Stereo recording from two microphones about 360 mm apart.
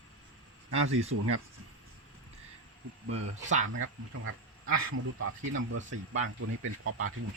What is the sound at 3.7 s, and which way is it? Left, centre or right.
Speech, right.